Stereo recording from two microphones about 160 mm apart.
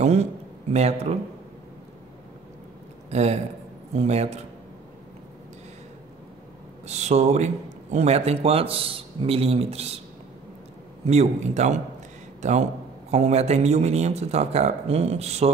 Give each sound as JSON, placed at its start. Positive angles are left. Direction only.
{"t": 0.0, "sound": "a man's voice", "side_deg": -45}
{"t": 3.1, "sound": "a man's voice", "side_deg": -45}
{"t": 6.9, "sound": "speech", "side_deg": -45}
{"t": 11.1, "sound": "a man's voice", "side_deg": -45}